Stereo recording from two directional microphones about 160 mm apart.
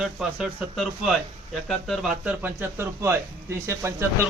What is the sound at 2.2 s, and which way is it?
Speech, 10° right (ahead or behind).